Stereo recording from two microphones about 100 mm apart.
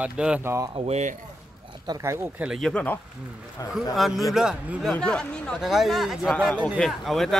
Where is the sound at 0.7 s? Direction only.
90° right.